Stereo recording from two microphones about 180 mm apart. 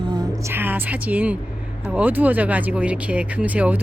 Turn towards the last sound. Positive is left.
turn(degrees=-10)  # may be behind; listen again after turning